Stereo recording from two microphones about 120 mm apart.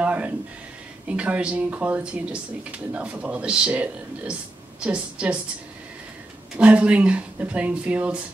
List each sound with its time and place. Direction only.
0.0 s a sound: 10° right (ahead or behind)
1.0 s speech: 10° right (ahead or behind)
6.5 s speech: 10° right (ahead or behind)